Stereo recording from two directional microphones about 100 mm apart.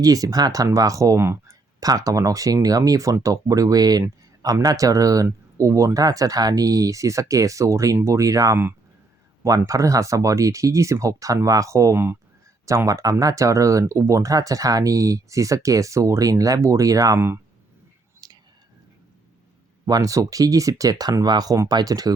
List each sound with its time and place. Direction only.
0.0 s speech: 40° right (ahead or behind)
17.2 s speech: 25° right (ahead or behind)
18.2 s whispering: 45° right (ahead or behind)
19.8 s speech: 35° right (ahead or behind)